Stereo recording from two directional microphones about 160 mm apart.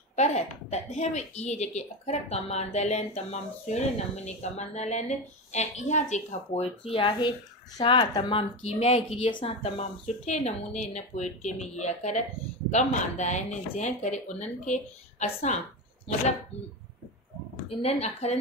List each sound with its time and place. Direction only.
0.1 s speech: 45° left (ahead or behind)
17.6 s a woman's voice: 40° left (ahead or behind)